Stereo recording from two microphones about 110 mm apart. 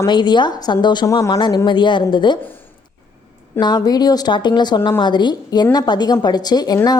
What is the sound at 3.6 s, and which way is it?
A woman's voice, 40° left (ahead or behind).